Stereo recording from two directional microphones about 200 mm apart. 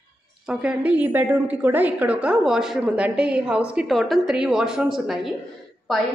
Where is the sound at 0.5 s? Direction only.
5° right (ahead or behind).